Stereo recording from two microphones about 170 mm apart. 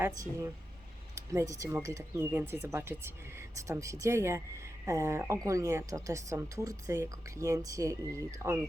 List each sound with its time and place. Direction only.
0.2 s speech: 20° right (ahead or behind)